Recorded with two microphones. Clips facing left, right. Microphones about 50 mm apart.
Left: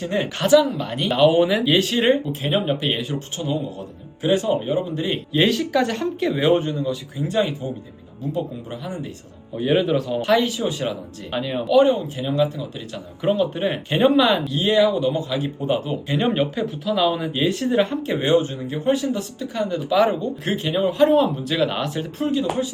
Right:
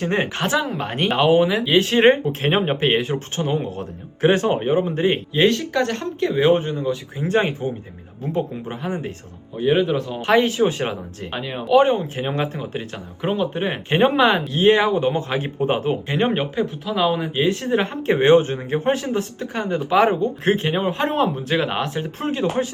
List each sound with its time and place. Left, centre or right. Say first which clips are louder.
0.0 s speech: right 1 dB; right
1.4 s speech: right 1 dB; centre
1.8 s speech: right 4 dB; right
5.4 s speech: even; centre
6.6 s speech: right 1 dB; right
9.6 s speech: right 1 dB; centre
10.2 s speech: right 5 dB; right
11.3 s speech: left 4 dB; centre
11.7 s speech: right 1 dB; right
13.2 s speech: left 2 dB; right